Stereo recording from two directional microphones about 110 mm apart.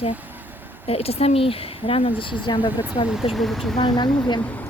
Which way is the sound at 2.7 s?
15° right (ahead or behind).